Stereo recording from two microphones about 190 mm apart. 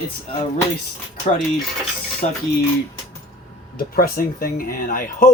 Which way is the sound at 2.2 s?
40° left (ahead or behind).